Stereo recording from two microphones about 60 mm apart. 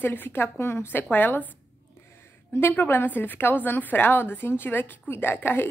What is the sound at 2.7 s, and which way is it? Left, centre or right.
A woman's voice, left.